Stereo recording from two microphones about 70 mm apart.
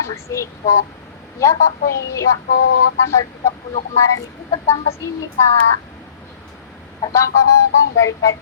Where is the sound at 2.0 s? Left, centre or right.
Left.